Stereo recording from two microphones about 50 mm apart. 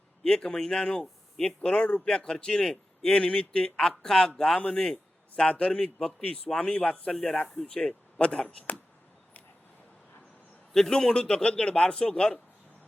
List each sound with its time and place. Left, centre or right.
0.2 s a man's voice: centre
5.4 s a man's voice: left
6.6 s speech: left
7.1 s a man's voice: centre
8.2 s speech: left
10.7 s a man's voice: centre